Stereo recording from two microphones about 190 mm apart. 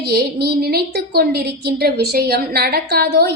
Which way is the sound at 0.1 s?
55° right (ahead or behind).